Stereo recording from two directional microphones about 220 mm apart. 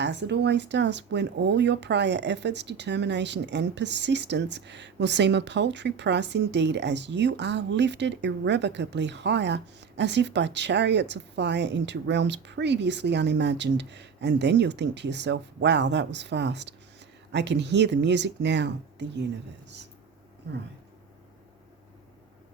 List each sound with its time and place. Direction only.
0.0 s speech: 50° right (ahead or behind)